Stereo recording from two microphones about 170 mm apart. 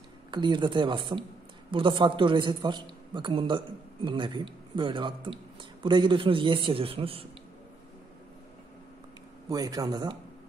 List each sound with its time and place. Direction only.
0.3 s a man's voice: 25° right (ahead or behind)
9.5 s a man's voice: 20° right (ahead or behind)